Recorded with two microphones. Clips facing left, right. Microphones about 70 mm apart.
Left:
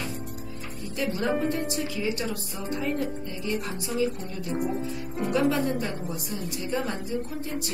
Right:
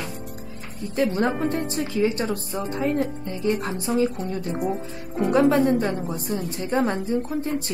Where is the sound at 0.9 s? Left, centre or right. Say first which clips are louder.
Right 5 dB; right.